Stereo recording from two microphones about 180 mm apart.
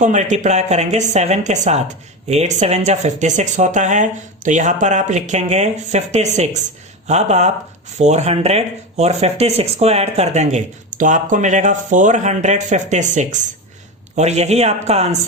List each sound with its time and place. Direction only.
0.0 s speech: 40° right (ahead or behind)